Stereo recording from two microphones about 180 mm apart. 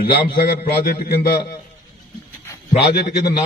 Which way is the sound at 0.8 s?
55° left (ahead or behind).